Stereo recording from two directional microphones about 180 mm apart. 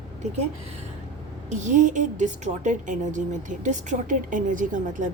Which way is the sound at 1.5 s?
40° right (ahead or behind).